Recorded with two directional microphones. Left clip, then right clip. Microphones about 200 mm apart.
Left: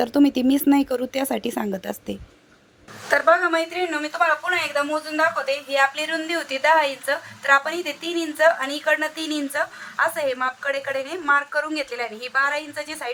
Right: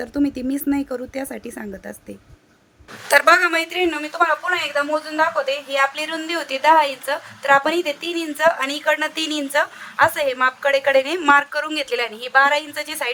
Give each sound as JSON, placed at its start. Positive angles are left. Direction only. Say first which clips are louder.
{"t": 0.0, "sound": "speech", "louder": "left 4 dB", "side_deg": 15}
{"t": 3.1, "sound": "a woman's voice", "louder": "right 4 dB", "side_deg": -50}